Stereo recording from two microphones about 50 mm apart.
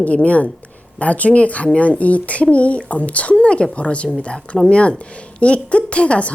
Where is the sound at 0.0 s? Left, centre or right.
Left.